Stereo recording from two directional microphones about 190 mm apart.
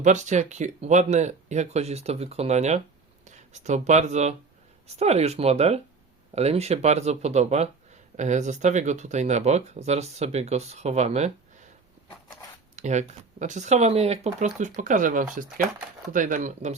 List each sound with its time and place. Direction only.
0.0 s speech: 40° right (ahead or behind)
12.7 s speech: 40° right (ahead or behind)